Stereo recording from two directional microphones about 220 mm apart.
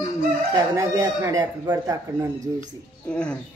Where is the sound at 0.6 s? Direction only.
15° right (ahead or behind).